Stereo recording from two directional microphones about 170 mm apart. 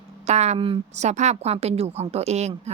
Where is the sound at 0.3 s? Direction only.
40° right (ahead or behind).